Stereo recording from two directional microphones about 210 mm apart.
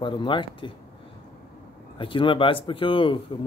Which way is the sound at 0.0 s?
25° left (ahead or behind).